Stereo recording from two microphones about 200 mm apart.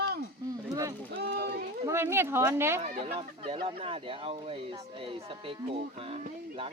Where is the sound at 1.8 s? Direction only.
10° right (ahead or behind).